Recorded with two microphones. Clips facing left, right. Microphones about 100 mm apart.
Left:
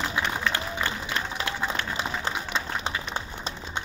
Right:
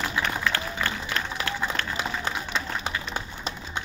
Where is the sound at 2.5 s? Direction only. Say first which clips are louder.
Even; 30° left (ahead or behind).